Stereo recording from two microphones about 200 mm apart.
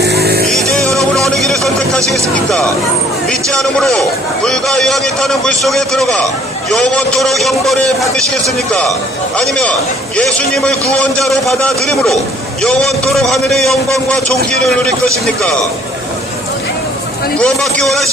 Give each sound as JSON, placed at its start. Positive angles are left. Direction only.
{"t": 0.0, "sound": "music", "side_deg": -55}
{"t": 0.5, "sound": "music", "side_deg": 0}
{"t": 3.2, "sound": "a man's voice", "side_deg": 5}
{"t": 17.4, "sound": "a man's voice", "side_deg": 5}